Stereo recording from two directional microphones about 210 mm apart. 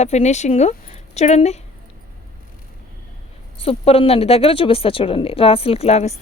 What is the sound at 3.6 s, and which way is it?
Speech, 25° left (ahead or behind).